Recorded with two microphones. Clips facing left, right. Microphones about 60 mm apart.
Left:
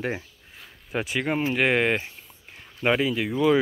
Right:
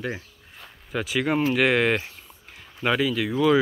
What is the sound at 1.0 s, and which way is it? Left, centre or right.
Speech, centre.